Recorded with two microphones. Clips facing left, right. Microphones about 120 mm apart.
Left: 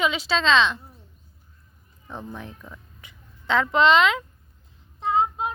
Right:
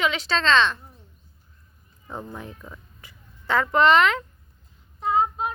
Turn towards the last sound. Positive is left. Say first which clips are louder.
# even
turn(degrees=20)  # may be behind; listen again after turning